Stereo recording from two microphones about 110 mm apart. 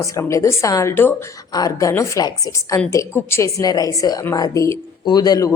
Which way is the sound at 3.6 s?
35° left (ahead or behind).